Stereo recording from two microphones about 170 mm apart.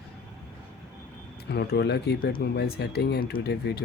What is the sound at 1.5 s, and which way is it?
Speech, 75° left (ahead or behind).